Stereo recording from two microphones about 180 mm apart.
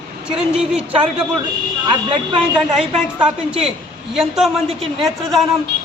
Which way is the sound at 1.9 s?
25° right (ahead or behind).